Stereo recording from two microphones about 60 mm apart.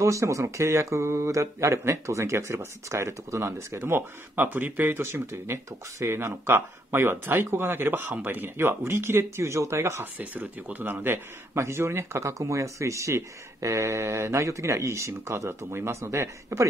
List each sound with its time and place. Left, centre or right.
0.0 s speech: right
10.1 s speech: right
11.5 s speech: right